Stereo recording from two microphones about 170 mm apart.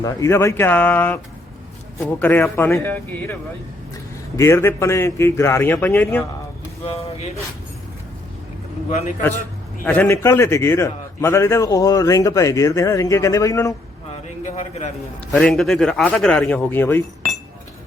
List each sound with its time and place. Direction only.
0.0 s a man's voice: 15° left (ahead or behind)
4.4 s a man's voice: 15° left (ahead or behind)
6.8 s speech: 35° left (ahead or behind)
9.8 s a man's voice: 10° left (ahead or behind)
14.4 s a sound: 45° left (ahead or behind)
15.3 s a man's voice: 5° left (ahead or behind)